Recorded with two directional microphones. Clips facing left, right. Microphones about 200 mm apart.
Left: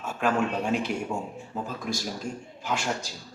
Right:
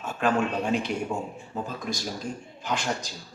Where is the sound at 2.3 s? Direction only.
45° left (ahead or behind).